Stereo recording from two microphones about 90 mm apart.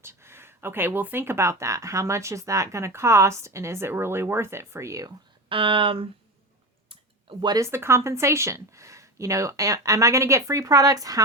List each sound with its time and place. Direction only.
0.0 s speech: 30° right (ahead or behind)
5.5 s speech: 70° right (ahead or behind)
7.3 s speech: 85° right
7.6 s speech: 30° right (ahead or behind)